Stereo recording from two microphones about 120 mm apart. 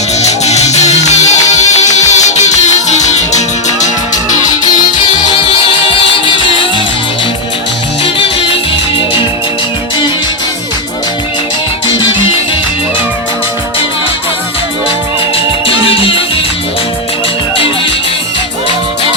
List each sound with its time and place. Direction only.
0.2 s music: 65° left (ahead or behind); by 4.2 s 85° left
5.9 s music: 45° left (ahead or behind)
15.6 s music: 50° left (ahead or behind)